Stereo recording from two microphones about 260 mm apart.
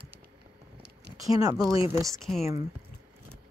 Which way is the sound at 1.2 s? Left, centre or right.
Centre.